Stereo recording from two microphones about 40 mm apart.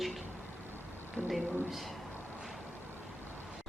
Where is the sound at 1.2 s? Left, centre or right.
Left.